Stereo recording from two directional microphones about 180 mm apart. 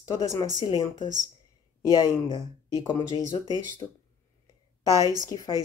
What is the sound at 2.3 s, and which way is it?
Speech, 25° left (ahead or behind).